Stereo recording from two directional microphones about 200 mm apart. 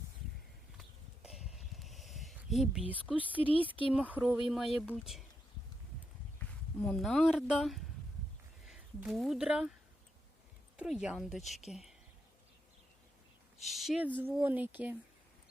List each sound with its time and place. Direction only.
0.8 s horse: centre (ahead or behind)
3.9 s a woman's voice: 5° right (ahead or behind)
6.4 s a sound: 10° left (ahead or behind)
6.8 s a woman's voice: 5° left (ahead or behind)
10.8 s a woman's voice: 5° right (ahead or behind)
13.7 s speech: centre (ahead or behind)